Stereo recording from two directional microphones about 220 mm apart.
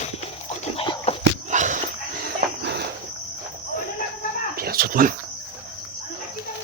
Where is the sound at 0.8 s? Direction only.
25° left (ahead or behind).